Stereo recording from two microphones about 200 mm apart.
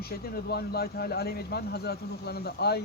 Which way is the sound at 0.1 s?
50° left (ahead or behind).